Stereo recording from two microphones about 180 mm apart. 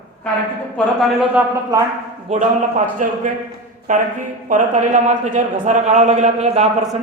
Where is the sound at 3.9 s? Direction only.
45° right (ahead or behind).